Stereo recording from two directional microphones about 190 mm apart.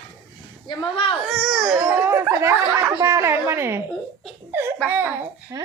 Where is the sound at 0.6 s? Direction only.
25° left (ahead or behind).